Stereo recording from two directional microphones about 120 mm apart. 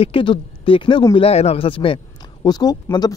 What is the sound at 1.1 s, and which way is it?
Speech, 60° left (ahead or behind).